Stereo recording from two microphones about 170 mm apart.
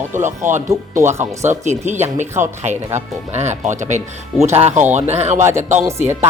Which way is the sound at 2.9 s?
45° right (ahead or behind).